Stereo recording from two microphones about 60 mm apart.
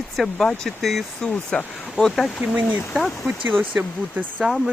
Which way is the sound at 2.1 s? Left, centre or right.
Centre.